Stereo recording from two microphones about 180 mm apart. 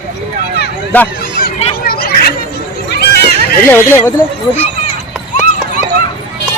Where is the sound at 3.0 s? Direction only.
60° left (ahead or behind).